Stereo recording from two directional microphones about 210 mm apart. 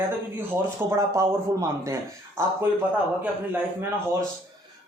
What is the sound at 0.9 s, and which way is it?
Speech, 15° right (ahead or behind).